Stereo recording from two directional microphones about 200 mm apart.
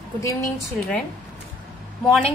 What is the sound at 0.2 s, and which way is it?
Speech, 15° left (ahead or behind).